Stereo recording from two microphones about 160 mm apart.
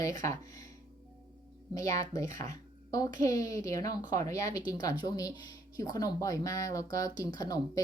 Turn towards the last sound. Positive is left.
turn(degrees=20)  # may be behind; listen again after turning